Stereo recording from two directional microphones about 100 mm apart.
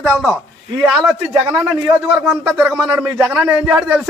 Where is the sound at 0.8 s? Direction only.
Centre (ahead or behind).